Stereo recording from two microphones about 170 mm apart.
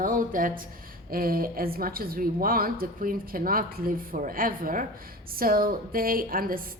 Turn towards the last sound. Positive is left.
turn(degrees=-55)  # may be behind; listen again after turning